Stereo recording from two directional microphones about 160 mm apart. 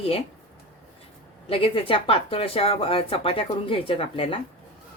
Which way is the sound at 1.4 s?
35° left (ahead or behind).